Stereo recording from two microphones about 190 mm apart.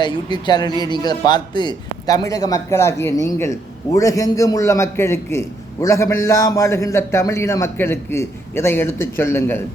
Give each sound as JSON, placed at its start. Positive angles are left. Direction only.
{"t": 0.0, "sound": "a man's voice", "side_deg": 25}